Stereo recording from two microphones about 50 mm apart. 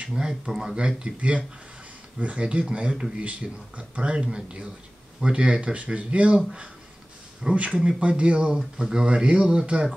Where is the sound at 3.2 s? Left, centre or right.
Right.